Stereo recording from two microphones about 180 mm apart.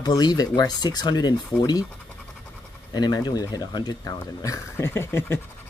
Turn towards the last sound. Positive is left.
turn(degrees=15)  # may be behind; listen again after turning